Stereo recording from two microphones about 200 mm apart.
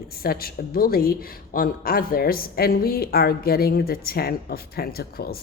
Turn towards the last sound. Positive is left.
turn(degrees=50)  # may be behind; listen again after turning